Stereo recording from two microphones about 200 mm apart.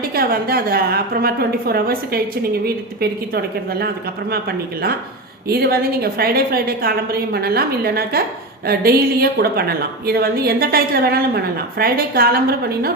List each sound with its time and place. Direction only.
0.1 s a woman's voice: 50° right (ahead or behind)